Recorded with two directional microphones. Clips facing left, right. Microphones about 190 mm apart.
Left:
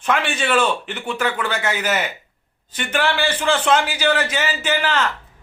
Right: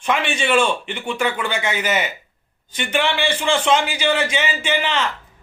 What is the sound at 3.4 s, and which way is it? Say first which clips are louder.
Speech: even; 10° right (ahead or behind).